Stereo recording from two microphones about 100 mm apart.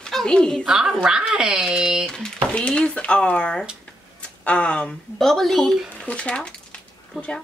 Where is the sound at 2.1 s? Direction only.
10° left (ahead or behind).